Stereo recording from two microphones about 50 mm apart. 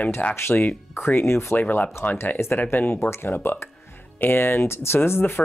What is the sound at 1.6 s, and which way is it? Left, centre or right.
Speech, left.